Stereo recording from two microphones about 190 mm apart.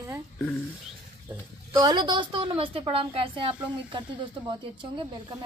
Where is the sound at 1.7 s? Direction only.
25° right (ahead or behind).